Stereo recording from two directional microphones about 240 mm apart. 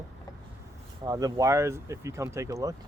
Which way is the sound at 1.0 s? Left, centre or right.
Centre.